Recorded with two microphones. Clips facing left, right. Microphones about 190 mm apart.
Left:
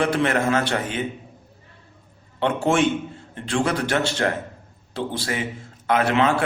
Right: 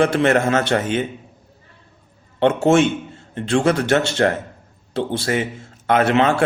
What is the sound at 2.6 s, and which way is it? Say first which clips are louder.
Speech: right 2 dB; 25° right (ahead or behind).